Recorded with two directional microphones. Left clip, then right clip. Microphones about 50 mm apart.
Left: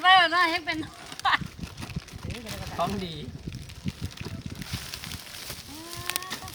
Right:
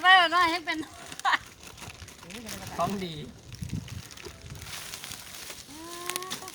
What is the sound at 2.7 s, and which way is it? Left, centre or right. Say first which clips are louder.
Speech: left 1 dB; right.